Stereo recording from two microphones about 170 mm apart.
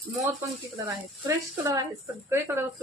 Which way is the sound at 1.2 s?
20° right (ahead or behind).